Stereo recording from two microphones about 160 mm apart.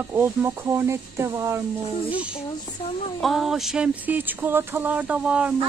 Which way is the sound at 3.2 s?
Centre (ahead or behind).